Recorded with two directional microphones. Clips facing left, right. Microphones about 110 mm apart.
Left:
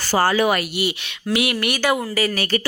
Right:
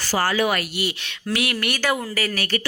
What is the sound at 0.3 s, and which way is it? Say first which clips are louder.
Speech: left 2 dB; 25° left (ahead or behind).